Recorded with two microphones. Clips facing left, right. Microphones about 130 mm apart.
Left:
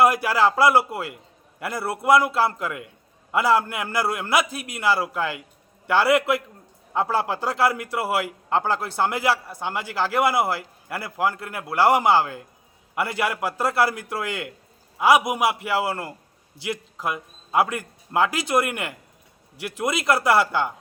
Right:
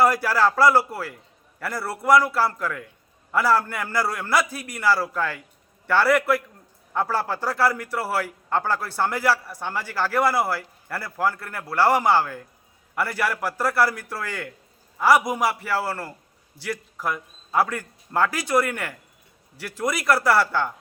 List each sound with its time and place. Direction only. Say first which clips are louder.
0.0 s a man's voice: left 1 dB; 20° left (ahead or behind)